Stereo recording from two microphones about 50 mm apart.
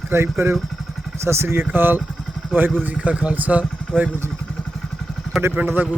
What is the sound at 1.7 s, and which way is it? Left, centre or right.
Speech, right.